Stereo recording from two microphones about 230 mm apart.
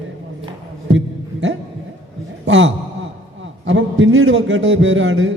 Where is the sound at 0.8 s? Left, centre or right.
Right.